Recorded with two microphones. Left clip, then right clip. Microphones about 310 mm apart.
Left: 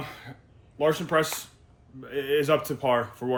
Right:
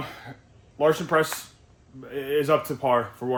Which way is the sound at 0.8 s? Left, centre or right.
Centre.